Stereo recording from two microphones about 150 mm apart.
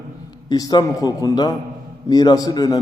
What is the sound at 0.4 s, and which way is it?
A man's voice, 25° left (ahead or behind).